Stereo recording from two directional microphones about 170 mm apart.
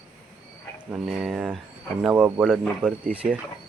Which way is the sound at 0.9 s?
5° right (ahead or behind).